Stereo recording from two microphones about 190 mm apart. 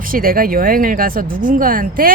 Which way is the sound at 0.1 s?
50° right (ahead or behind).